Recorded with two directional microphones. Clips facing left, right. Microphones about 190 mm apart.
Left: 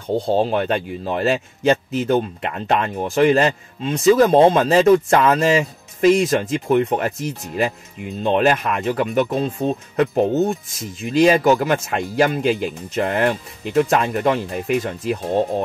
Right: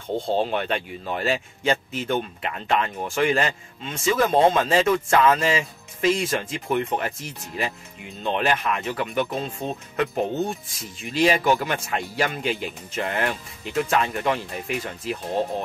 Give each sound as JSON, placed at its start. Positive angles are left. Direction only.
{"t": 0.3, "sound": "speech", "side_deg": 40}